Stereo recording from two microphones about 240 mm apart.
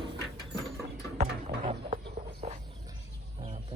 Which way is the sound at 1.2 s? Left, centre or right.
Right.